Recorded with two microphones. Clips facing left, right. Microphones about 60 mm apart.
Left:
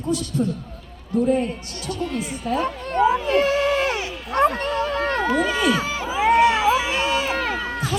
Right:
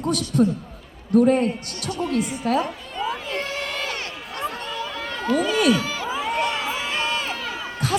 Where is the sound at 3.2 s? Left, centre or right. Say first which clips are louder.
Left 10 dB; left.